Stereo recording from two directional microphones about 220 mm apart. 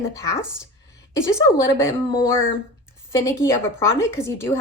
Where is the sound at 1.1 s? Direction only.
15° left (ahead or behind).